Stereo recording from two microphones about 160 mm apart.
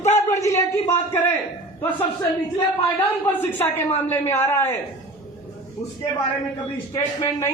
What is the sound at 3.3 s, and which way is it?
Speech, 15° left (ahead or behind).